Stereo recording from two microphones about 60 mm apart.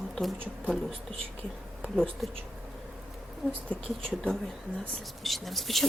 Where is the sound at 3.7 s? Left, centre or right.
Centre.